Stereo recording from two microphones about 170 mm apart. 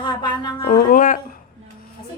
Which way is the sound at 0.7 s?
55° left (ahead or behind).